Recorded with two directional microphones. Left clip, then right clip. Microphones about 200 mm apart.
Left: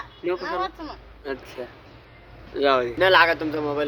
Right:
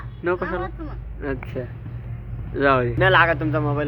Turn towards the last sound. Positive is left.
turn(degrees=5)  # may be behind; listen again after turning